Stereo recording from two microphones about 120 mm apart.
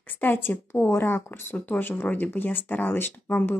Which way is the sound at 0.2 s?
15° left (ahead or behind).